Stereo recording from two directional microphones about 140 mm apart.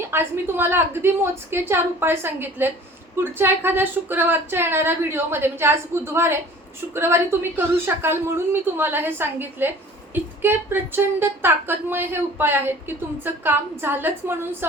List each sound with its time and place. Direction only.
0.1 s speech: 15° right (ahead or behind)